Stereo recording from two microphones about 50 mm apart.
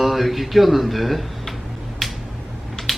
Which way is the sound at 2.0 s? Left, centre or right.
Centre.